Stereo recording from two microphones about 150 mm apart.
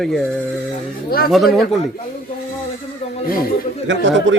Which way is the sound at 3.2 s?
75° left (ahead or behind).